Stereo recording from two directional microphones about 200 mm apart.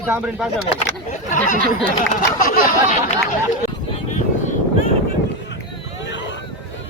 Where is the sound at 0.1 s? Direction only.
5° right (ahead or behind).